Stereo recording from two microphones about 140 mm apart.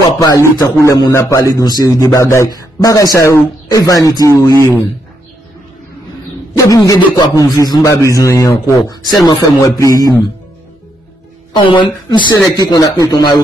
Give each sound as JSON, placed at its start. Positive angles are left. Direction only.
{"t": 0.2, "sound": "a man's voice", "side_deg": 25}
{"t": 6.5, "sound": "a man's voice", "side_deg": 25}
{"t": 11.5, "sound": "speech", "side_deg": 35}